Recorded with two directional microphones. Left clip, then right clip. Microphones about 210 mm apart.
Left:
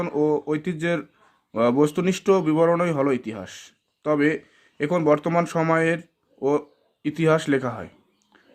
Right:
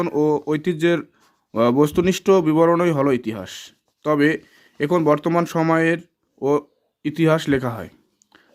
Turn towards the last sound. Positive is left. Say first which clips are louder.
# right 2 dB
turn(degrees=-40)  # may be behind; listen again after turning